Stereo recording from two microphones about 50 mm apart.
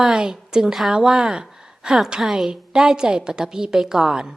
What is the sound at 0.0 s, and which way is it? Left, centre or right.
A woman's voice, centre.